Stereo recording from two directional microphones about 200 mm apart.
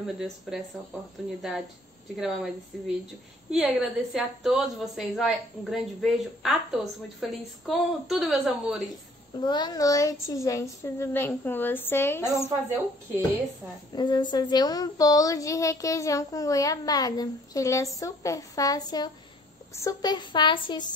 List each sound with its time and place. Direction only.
0.5 s a woman's voice: centre (ahead or behind)
2.1 s a woman's voice: 5° right (ahead or behind)
3.5 s a woman's voice: 5° right (ahead or behind)
9.4 s a woman's voice: 20° left (ahead or behind)
12.4 s speech: 10° right (ahead or behind)
13.9 s a woman's voice: 20° left (ahead or behind)